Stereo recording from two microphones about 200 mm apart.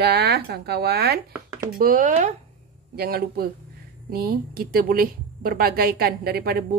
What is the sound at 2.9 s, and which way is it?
A woman's voice, 50° right (ahead or behind).